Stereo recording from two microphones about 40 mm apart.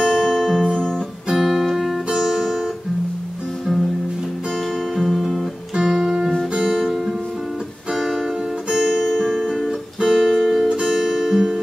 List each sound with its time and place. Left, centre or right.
0.0 s music: centre
0.7 s guitar: centre
1.3 s music: centre
2.1 s guitar: centre
4.9 s guitar: centre
6.6 s music: centre
8.2 s music: centre
8.8 s music: centre
9.7 s guitar: centre
10.7 s music: centre